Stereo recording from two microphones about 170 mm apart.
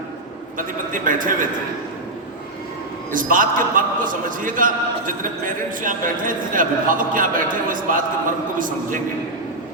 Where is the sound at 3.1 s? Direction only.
55° right (ahead or behind).